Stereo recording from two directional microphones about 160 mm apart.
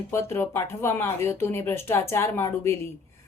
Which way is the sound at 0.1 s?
15° left (ahead or behind).